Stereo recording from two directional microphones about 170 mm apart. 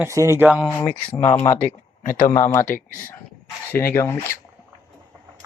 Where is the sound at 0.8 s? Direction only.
10° left (ahead or behind).